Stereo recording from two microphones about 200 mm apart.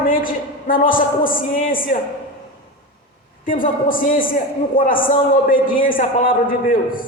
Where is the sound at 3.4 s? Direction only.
45° left (ahead or behind).